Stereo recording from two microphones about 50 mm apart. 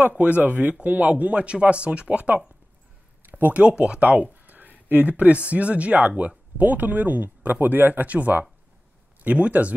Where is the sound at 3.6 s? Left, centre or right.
Right.